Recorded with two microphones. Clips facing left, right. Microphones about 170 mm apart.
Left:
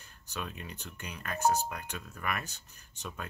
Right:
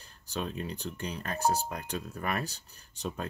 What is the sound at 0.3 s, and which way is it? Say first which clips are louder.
Speech: right 6 dB; 30° right (ahead or behind).